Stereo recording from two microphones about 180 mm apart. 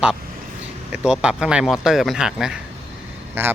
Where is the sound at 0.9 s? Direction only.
5° right (ahead or behind).